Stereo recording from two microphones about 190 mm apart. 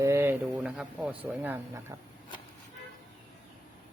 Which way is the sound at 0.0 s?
15° right (ahead or behind).